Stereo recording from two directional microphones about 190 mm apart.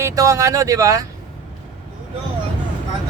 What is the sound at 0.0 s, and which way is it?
A man's voice, 15° right (ahead or behind).